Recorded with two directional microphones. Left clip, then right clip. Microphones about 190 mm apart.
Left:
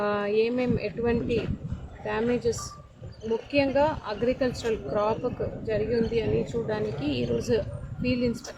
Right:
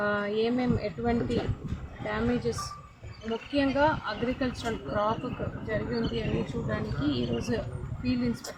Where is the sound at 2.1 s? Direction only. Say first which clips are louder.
Left 4 dB; 25° left (ahead or behind).